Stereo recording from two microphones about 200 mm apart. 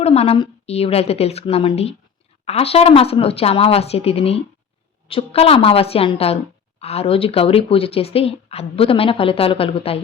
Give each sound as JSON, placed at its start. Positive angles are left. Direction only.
{"t": 0.0, "sound": "a woman's voice", "side_deg": 30}